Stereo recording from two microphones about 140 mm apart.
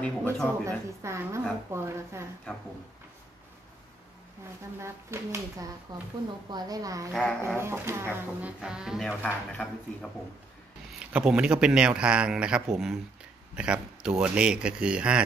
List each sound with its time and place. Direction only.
0.0 s speech: 10° left (ahead or behind)
0.7 s speech: 20° right (ahead or behind)
2.5 s speech: 10° left (ahead or behind)
4.7 s speech: 20° right (ahead or behind)
7.1 s speech: 5° left (ahead or behind)
7.5 s a man's voice: 15° right (ahead or behind)
11.0 s a man's voice: 10° right (ahead or behind)